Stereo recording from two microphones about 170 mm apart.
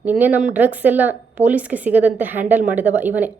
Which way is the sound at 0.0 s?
10° right (ahead or behind).